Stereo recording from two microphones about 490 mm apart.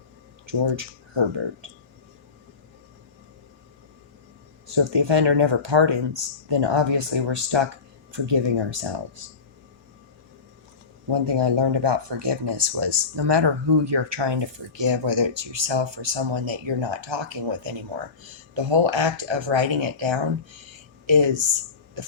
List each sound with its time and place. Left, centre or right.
0.4 s speech: right
4.7 s speech: right
11.1 s speech: right